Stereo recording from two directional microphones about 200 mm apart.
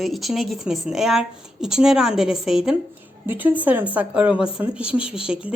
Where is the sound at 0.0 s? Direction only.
Centre (ahead or behind).